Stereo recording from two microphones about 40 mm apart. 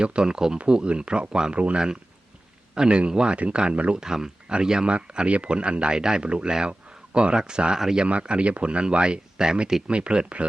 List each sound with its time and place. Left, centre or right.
0.0 s speech: right
3.3 s speech: right
4.0 s speech: centre
6.5 s speech: centre
7.1 s speech: right
9.8 s speech: right